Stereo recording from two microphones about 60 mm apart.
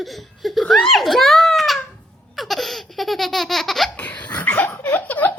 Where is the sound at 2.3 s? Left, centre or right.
Centre.